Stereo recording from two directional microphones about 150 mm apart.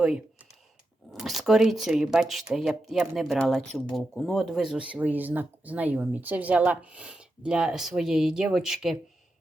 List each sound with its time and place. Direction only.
0.0 s speech: 5° right (ahead or behind)